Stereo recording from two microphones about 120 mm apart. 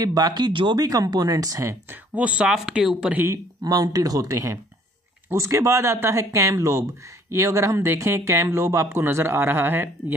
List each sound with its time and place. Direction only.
0.0 s speech: 30° right (ahead or behind)
2.1 s speech: 10° right (ahead or behind)
3.3 s speech: 30° right (ahead or behind)